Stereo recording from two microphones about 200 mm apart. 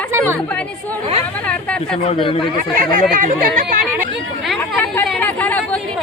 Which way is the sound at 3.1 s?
40° right (ahead or behind).